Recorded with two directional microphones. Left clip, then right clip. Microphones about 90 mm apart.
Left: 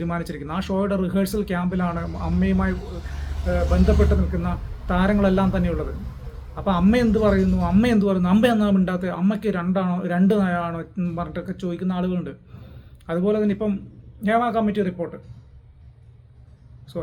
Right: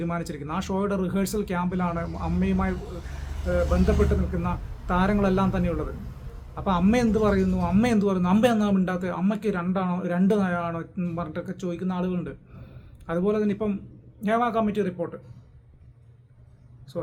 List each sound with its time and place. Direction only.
0.0 s a man's voice: 35° right (ahead or behind)
16.9 s speech: 25° right (ahead or behind)